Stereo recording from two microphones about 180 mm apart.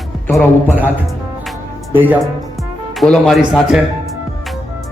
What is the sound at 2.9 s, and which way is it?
Speech, centre (ahead or behind).